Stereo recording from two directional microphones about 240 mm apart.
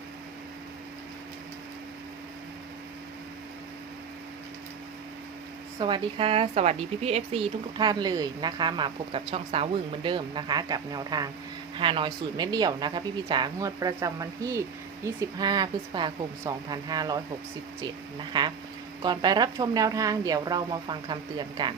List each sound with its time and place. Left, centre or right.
5.8 s speech: right
18.3 s speech: centre